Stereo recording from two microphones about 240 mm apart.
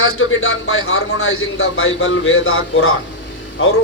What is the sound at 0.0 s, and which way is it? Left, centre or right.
Speech, left.